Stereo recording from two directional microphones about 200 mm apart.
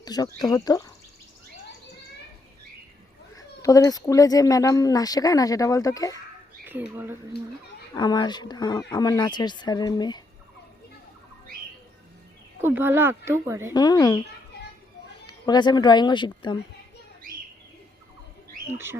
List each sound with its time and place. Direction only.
0.0 s speech: 20° left (ahead or behind)
3.3 s speech: 15° left (ahead or behind)
6.7 s speech: 10° right (ahead or behind)
7.9 s speech: 20° left (ahead or behind)
12.6 s speech: 10° right (ahead or behind)
13.7 s speech: 20° left (ahead or behind)
15.3 s speech: 20° left (ahead or behind)
18.7 s speech: 10° right (ahead or behind)